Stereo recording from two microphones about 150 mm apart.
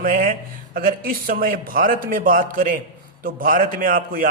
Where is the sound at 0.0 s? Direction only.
65° right (ahead or behind).